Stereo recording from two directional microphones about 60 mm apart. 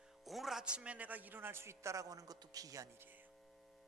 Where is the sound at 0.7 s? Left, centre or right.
Centre; by 2.8 s right.